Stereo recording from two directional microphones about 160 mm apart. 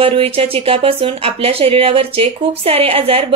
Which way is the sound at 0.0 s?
35° right (ahead or behind).